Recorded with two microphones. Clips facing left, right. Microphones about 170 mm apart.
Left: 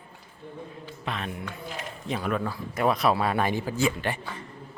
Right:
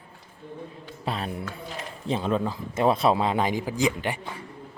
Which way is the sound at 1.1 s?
35° right (ahead or behind).